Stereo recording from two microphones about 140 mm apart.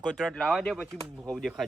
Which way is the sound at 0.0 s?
5° left (ahead or behind).